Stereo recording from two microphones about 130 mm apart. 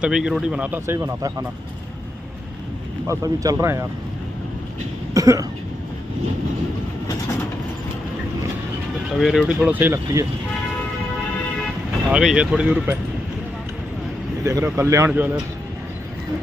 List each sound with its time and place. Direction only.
0.0 s speech: 5° right (ahead or behind); by 1.3 s 20° right (ahead or behind)
3.1 s speech: 25° right (ahead or behind)
5.1 s cough: 25° right (ahead or behind)
9.1 s speech: 5° left (ahead or behind)
9.6 s speech: 15° right (ahead or behind)
12.1 s speech: 5° right (ahead or behind)
14.4 s speech: 20° right (ahead or behind)